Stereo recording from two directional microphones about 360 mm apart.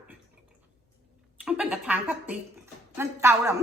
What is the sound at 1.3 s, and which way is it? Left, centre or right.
Speech, centre.